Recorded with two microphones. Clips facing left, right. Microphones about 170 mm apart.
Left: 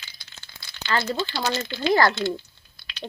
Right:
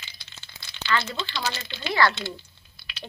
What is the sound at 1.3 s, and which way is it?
Speech, 45° left (ahead or behind).